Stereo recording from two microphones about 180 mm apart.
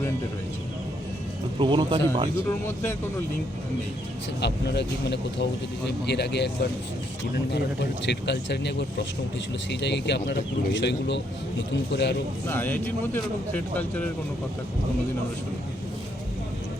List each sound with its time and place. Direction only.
1.5 s speech: 25° right (ahead or behind)
2.5 s speech: 15° left (ahead or behind)
4.4 s speech: 70° left (ahead or behind)
12.5 s speech: 10° left (ahead or behind)